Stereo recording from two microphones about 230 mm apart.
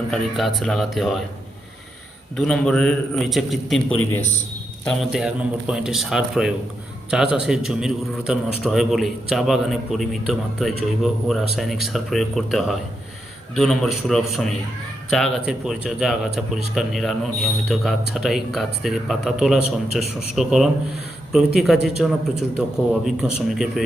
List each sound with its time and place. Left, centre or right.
0.1 s a man's voice: centre
2.3 s a man's voice: centre
4.9 s a man's voice: centre